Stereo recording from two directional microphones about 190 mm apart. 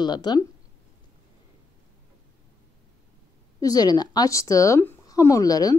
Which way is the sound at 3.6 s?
20° left (ahead or behind).